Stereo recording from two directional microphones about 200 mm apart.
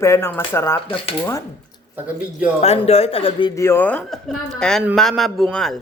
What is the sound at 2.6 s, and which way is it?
A man's voice, 30° left (ahead or behind).